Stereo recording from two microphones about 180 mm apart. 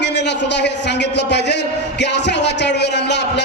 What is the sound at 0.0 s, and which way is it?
A man's voice, 70° left (ahead or behind).